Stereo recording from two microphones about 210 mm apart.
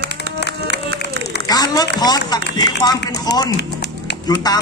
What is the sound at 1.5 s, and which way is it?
Speech, 20° left (ahead or behind).